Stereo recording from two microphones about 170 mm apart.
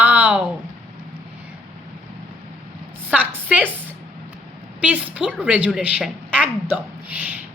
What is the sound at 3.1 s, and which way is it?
Speech, 10° right (ahead or behind).